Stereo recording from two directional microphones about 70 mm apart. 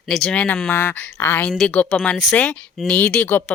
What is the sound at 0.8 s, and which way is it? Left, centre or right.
Speech, left.